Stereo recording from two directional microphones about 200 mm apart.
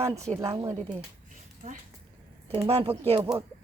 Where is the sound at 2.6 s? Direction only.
30° right (ahead or behind).